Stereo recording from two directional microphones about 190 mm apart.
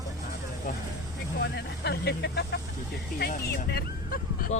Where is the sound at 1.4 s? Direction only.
60° left (ahead or behind).